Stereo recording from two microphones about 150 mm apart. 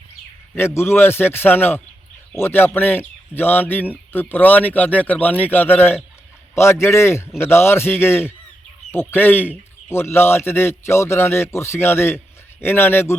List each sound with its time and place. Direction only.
0.5 s a man's voice: 15° left (ahead or behind)